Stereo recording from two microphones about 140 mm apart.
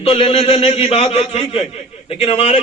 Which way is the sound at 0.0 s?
40° left (ahead or behind).